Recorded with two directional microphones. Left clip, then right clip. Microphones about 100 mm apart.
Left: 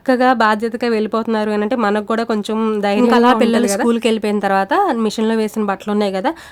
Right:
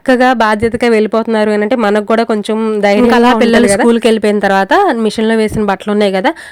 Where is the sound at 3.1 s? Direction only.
50° right (ahead or behind).